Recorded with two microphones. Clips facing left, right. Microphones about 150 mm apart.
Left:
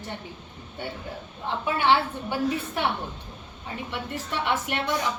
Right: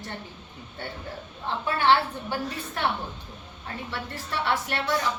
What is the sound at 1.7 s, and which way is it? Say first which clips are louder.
A woman's voice: even; 15° left (ahead or behind).